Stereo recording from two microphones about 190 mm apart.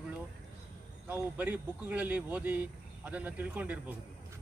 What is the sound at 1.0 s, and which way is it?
Speech, 10° right (ahead or behind).